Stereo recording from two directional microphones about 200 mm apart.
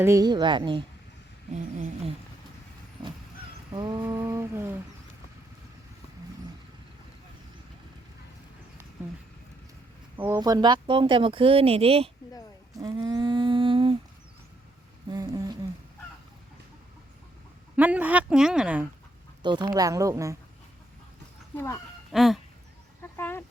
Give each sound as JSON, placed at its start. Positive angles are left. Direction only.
{"t": 0.0, "sound": "speech", "side_deg": -15}
{"t": 1.5, "sound": "a sound", "side_deg": -35}
{"t": 3.7, "sound": "a woman's voice", "side_deg": -20}
{"t": 10.2, "sound": "speech", "side_deg": -15}
{"t": 12.7, "sound": "humming", "side_deg": -20}
{"t": 15.1, "sound": "a sound", "side_deg": -20}
{"t": 17.7, "sound": "a woman's voice", "side_deg": -10}
{"t": 19.4, "sound": "a woman's voice", "side_deg": -20}
{"t": 21.5, "sound": "speech", "side_deg": 10}
{"t": 22.1, "sound": "fowl", "side_deg": 0}
{"t": 23.1, "sound": "chicken", "side_deg": 10}